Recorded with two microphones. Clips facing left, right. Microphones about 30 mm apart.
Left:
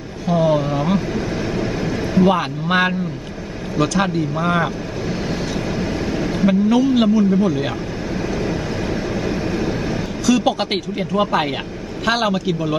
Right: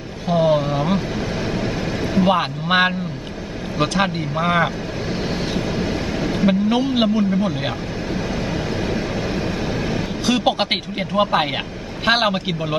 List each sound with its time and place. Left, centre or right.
0.3 s vehicle: right
3.7 s speech: right
5.8 s vehicle: centre
6.7 s a man's voice: right
10.2 s speech: right